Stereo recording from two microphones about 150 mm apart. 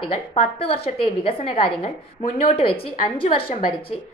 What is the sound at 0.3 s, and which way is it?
A woman's voice, 40° left (ahead or behind).